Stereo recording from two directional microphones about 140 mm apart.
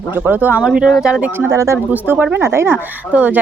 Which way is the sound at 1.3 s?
20° right (ahead or behind).